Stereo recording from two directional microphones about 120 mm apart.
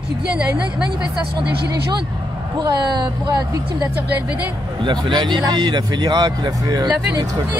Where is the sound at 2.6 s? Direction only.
35° right (ahead or behind).